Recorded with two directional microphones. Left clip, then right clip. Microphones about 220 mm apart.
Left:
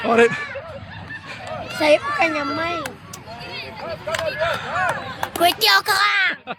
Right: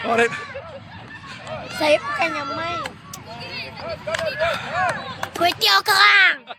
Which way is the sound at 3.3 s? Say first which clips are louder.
Even; 10° right (ahead or behind).